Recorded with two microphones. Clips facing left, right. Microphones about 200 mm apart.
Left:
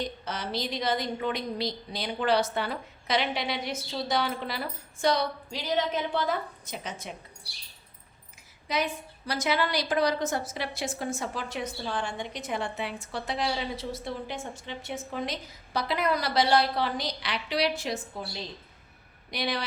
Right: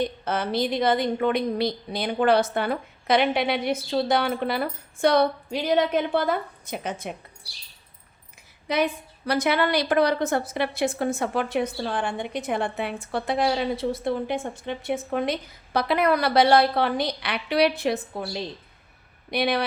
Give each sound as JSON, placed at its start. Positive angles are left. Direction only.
{"t": 0.3, "sound": "a woman's voice", "side_deg": -55}
{"t": 8.6, "sound": "a woman's voice", "side_deg": -60}
{"t": 19.3, "sound": "a woman's voice", "side_deg": -60}